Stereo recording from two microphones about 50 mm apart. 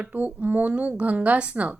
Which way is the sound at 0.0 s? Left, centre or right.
Right.